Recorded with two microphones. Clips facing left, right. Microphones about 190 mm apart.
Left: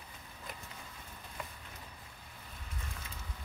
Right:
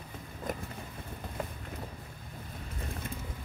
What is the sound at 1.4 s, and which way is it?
Vehicle, 45° right (ahead or behind).